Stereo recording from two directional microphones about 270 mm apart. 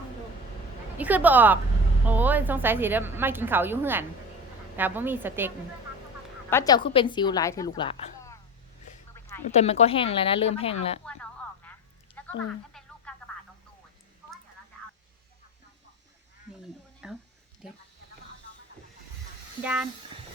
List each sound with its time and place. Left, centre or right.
0.9 s a woman's voice: centre
6.5 s a woman's voice: centre
9.5 s speech: left
11.0 s a sound: centre
13.1 s radio: centre
17.0 s a woman's voice: centre
19.6 s speech: centre